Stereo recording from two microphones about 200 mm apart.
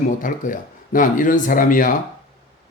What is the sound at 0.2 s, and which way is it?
Speech, 40° left (ahead or behind).